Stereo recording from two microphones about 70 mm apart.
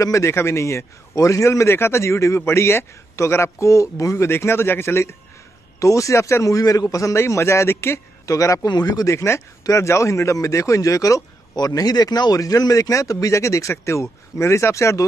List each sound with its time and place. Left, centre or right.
0.0 s a man's voice: left
5.8 s speech: left
7.2 s a man's voice: left
8.3 s speech: left
8.6 s speech: left
9.1 s a man's voice: left
11.5 s speech: left